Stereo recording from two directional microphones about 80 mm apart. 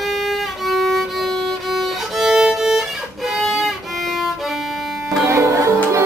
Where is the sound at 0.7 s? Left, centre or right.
Centre.